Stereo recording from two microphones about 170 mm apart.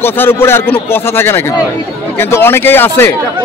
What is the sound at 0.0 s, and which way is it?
Speech, 15° left (ahead or behind).